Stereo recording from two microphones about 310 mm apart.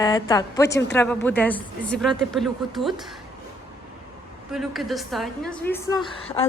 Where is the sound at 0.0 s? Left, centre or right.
Centre.